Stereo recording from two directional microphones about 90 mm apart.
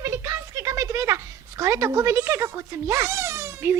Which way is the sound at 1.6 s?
35° right (ahead or behind).